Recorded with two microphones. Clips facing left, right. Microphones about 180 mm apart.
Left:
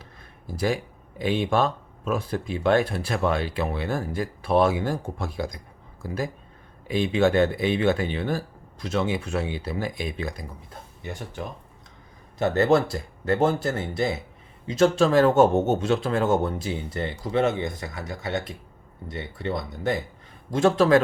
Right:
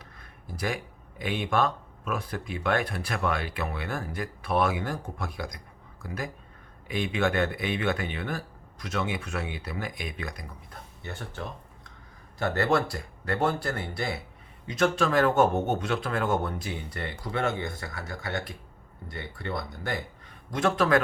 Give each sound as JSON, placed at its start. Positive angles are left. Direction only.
{"t": 0.0, "sound": "a sound", "side_deg": 30}
{"t": 1.2, "sound": "speech", "side_deg": 30}
{"t": 11.0, "sound": "speech", "side_deg": 15}